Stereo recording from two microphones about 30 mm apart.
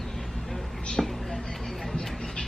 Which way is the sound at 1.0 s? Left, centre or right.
Centre.